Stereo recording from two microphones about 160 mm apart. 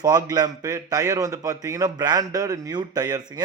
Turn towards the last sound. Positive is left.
turn(degrees=-25)  # may be behind; listen again after turning